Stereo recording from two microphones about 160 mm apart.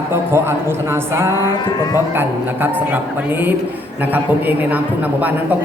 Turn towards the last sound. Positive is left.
turn(degrees=-10)  # may be behind; listen again after turning